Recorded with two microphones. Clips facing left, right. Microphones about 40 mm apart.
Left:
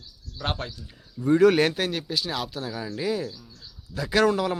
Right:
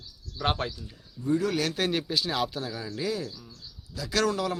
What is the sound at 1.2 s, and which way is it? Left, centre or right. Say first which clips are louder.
Speech: left 8 dB; left.